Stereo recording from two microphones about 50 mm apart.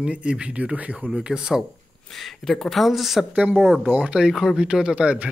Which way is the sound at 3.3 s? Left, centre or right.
Right.